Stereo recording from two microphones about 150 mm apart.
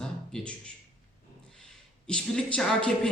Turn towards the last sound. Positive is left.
turn(degrees=5)  # may be behind; listen again after turning